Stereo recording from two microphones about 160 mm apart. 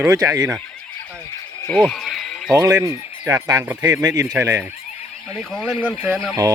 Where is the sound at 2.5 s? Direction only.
20° right (ahead or behind).